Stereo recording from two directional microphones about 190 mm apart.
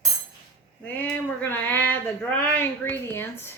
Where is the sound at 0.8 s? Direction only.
10° left (ahead or behind).